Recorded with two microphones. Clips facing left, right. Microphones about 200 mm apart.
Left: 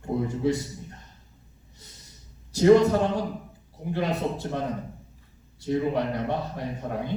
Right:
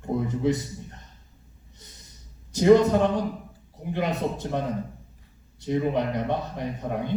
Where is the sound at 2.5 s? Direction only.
20° right (ahead or behind).